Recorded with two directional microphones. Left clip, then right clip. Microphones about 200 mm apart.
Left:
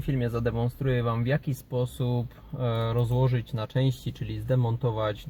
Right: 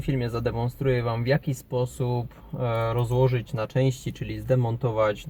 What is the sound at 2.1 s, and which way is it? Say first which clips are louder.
Speech: right 3 dB; 20° left (ahead or behind).